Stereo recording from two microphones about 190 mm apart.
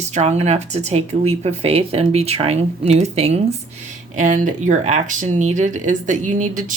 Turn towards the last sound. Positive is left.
turn(degrees=-40)  # may be behind; listen again after turning